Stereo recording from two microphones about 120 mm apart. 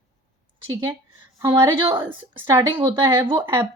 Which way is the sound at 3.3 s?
40° right (ahead or behind).